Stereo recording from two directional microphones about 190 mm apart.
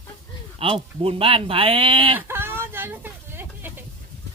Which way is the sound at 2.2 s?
10° right (ahead or behind).